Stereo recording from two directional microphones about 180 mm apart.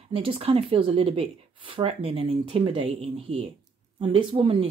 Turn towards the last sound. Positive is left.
turn(degrees=-30)  # may be behind; listen again after turning